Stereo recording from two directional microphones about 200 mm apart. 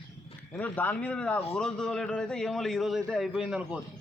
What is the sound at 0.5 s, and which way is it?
A man's voice, 10° left (ahead or behind).